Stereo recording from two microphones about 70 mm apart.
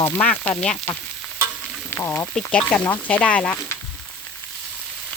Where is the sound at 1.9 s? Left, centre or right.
Left.